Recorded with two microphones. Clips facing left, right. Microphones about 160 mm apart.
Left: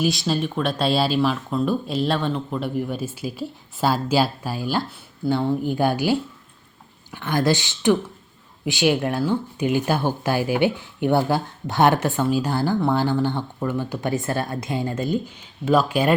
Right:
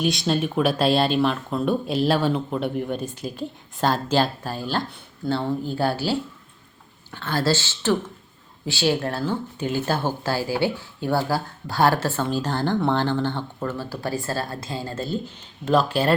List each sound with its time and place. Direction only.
0.0 s speech: centre (ahead or behind)